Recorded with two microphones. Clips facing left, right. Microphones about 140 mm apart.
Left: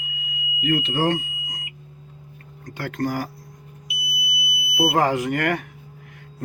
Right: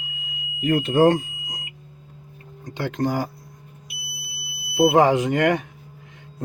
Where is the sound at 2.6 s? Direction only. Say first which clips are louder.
Right 2 dB; 20° right (ahead or behind).